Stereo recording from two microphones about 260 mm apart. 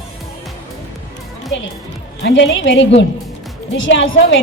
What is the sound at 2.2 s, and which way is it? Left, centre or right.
A woman's voice, left.